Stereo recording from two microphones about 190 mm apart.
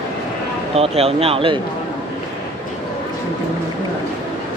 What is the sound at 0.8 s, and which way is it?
Speech, 30° right (ahead or behind).